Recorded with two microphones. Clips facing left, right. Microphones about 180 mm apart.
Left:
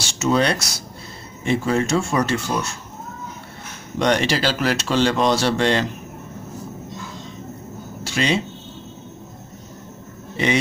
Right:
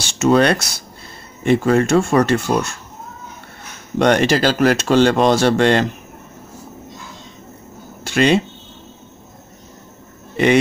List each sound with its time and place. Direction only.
0.0 s speech: 60° right (ahead or behind)
4.0 s speech: 50° right (ahead or behind)
8.0 s a sound: 55° right (ahead or behind)
10.3 s a man's voice: 55° right (ahead or behind)